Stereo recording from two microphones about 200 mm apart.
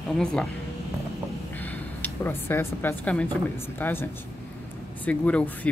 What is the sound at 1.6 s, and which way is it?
Speech, 10° left (ahead or behind).